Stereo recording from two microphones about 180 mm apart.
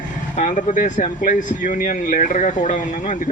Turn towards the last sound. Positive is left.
turn(degrees=45)  # may be behind; listen again after turning